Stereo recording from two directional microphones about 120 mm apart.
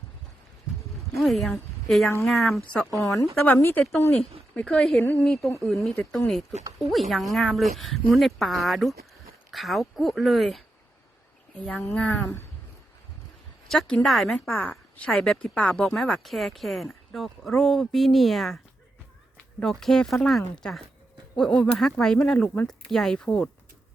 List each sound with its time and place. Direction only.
1.1 s a woman's voice: centre (ahead or behind)
3.0 s speech: 25° left (ahead or behind); by 10.6 s centre (ahead or behind)
11.6 s speech: 5° left (ahead or behind)
13.7 s speech: 5° left (ahead or behind)
19.8 s speech: 5° left (ahead or behind)